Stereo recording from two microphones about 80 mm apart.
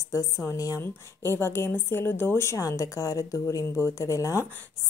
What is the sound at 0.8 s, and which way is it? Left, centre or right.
A woman's voice, left.